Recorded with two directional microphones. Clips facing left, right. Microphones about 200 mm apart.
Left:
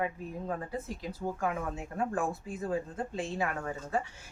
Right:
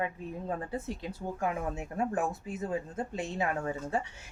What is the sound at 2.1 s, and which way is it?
Speech, 20° right (ahead or behind).